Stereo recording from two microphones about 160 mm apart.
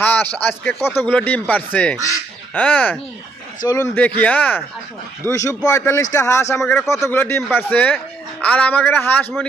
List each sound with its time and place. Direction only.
0.0 s speech: 10° left (ahead or behind)
3.6 s a man's voice: 25° left (ahead or behind)
4.2 s a man's voice: 10° left (ahead or behind)
6.6 s speech: centre (ahead or behind)
7.0 s speech: 15° left (ahead or behind)